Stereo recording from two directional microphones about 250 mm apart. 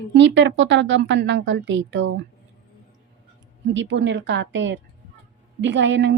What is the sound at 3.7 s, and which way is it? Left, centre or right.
Speech, right.